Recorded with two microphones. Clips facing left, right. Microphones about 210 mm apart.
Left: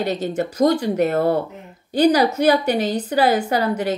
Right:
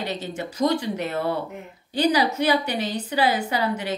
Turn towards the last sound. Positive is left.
turn(degrees=45)  # may be behind; listen again after turning